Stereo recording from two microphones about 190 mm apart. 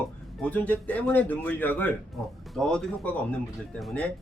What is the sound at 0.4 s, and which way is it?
Speech, 5° left (ahead or behind).